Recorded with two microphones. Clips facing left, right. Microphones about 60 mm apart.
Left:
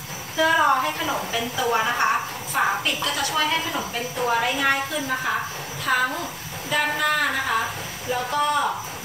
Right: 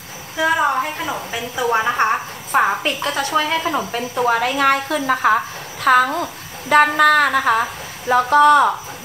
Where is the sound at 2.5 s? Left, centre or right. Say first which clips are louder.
Right 7 dB; right.